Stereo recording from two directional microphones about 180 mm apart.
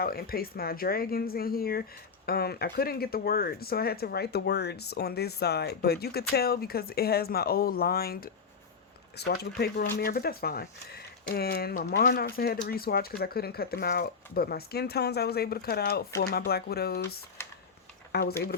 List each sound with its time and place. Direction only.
0.0 s speech: 55° left (ahead or behind)
17.4 s a sound: 15° left (ahead or behind)
18.1 s speech: 60° left (ahead or behind)